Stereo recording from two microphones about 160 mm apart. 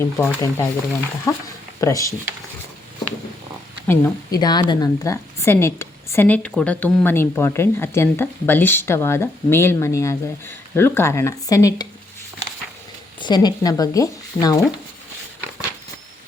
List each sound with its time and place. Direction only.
0.0 s speech: 15° left (ahead or behind)
3.8 s speech: 25° left (ahead or behind)
13.1 s speech: 30° left (ahead or behind)